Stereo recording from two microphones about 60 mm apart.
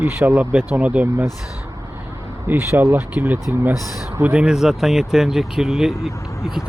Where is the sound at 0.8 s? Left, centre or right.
Right.